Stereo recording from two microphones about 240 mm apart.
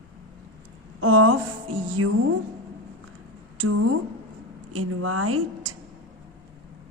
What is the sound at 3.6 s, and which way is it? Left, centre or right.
A woman's voice, right.